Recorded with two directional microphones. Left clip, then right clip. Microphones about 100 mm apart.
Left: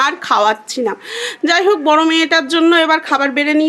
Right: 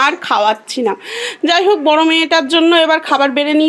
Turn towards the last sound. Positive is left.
turn(degrees=-20)  # may be behind; listen again after turning